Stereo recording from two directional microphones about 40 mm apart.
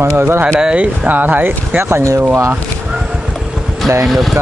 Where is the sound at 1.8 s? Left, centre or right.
Right.